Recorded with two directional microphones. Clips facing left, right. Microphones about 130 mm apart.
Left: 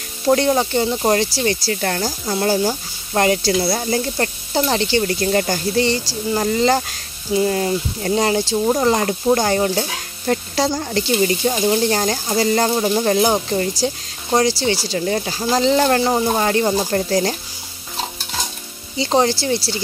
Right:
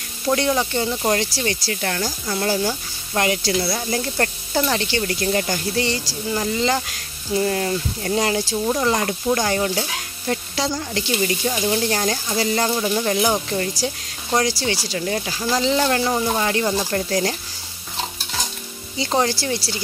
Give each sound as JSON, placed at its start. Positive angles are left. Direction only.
{"t": 0.3, "sound": "speech", "side_deg": 35}
{"t": 4.2, "sound": "speech", "side_deg": 25}
{"t": 7.3, "sound": "speech", "side_deg": 20}
{"t": 10.2, "sound": "speech", "side_deg": 45}
{"t": 15.5, "sound": "speech", "side_deg": 40}
{"t": 16.0, "sound": "speech", "side_deg": 25}
{"t": 18.9, "sound": "speech", "side_deg": 25}